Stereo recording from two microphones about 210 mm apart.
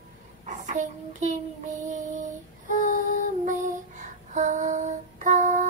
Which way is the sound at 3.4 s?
35° right (ahead or behind).